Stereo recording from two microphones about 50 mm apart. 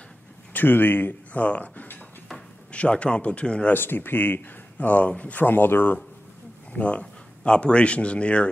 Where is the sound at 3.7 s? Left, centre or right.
Left.